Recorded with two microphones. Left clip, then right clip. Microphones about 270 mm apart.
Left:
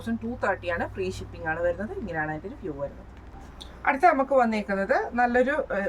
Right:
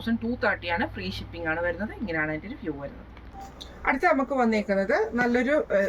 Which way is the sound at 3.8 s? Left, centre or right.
Centre.